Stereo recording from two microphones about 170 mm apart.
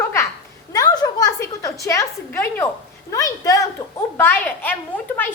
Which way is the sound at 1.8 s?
15° left (ahead or behind).